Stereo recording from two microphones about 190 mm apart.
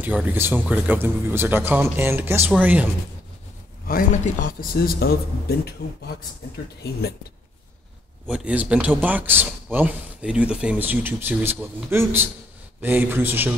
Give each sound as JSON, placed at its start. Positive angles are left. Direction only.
{"t": 0.0, "sound": "speech", "side_deg": -10}
{"t": 3.8, "sound": "speech", "side_deg": 45}
{"t": 8.3, "sound": "speech", "side_deg": -5}